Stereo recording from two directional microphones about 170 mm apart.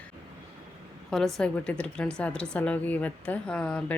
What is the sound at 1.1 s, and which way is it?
A woman's voice, 5° left (ahead or behind).